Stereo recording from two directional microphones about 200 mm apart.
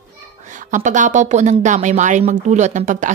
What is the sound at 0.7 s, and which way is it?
A woman's voice, 40° right (ahead or behind).